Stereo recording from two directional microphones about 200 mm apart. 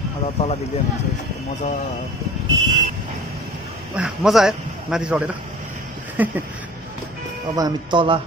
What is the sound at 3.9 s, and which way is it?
A man's voice, centre (ahead or behind).